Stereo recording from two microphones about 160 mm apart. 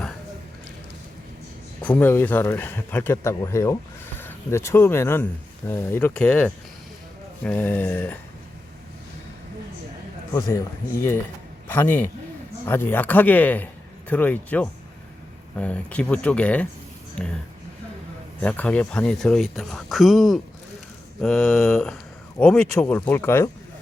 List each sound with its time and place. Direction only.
1.8 s speech: 10° left (ahead or behind)
10.3 s speech: 20° left (ahead or behind)
18.4 s speech: 10° left (ahead or behind)